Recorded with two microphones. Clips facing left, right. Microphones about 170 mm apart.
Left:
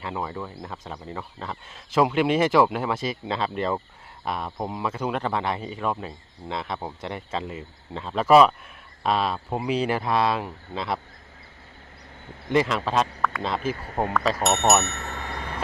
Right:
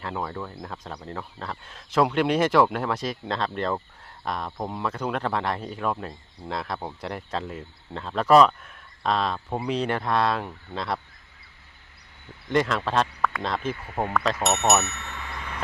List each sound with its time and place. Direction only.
0.0 s speech: 5° left (ahead or behind)
12.5 s speech: centre (ahead or behind)
13.7 s speech: 40° left (ahead or behind)
14.8 s bicycle bell: 40° left (ahead or behind)